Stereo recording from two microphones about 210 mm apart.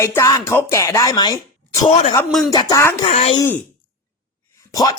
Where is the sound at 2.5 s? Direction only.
20° left (ahead or behind).